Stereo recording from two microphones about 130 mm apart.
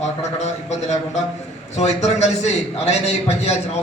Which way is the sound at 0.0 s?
60° left (ahead or behind).